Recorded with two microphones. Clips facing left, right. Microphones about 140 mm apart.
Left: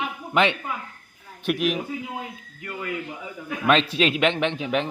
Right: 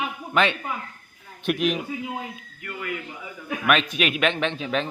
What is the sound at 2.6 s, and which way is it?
A man's voice, 25° left (ahead or behind).